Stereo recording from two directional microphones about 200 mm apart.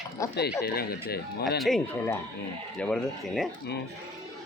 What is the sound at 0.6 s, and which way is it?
Speech, 50° left (ahead or behind).